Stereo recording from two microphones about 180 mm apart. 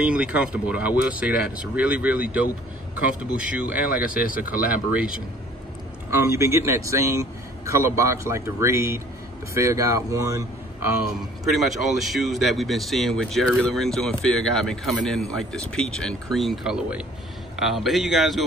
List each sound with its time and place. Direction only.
0.0 s speech: 5° right (ahead or behind)
11.1 s speech: centre (ahead or behind)